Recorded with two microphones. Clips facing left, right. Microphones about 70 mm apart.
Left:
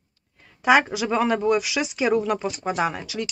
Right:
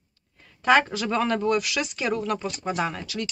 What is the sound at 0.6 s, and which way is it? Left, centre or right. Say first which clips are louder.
Speech: left 2 dB; centre.